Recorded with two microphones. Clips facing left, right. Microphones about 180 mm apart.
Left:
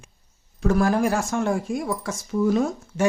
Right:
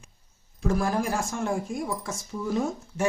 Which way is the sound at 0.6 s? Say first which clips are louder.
Left 6 dB; 70° left (ahead or behind).